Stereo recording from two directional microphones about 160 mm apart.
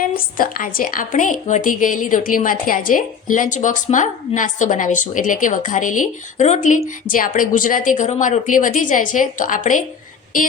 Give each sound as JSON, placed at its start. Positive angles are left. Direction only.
{"t": 0.0, "sound": "a woman's voice", "side_deg": 60}